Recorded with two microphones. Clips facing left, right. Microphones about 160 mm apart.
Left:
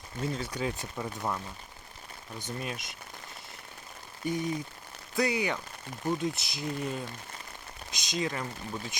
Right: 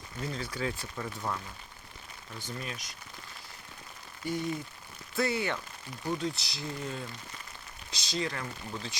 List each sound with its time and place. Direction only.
0.3 s speech: 20° left (ahead or behind)
2.4 s speech: 20° left (ahead or behind)
4.2 s speech: 20° left (ahead or behind)